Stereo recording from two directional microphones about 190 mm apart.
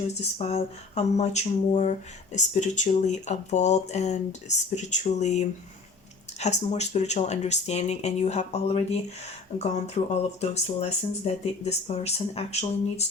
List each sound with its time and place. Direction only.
0.1 s speech: 35° left (ahead or behind)